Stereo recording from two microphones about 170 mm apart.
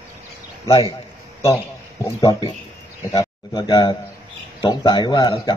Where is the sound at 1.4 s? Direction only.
15° left (ahead or behind).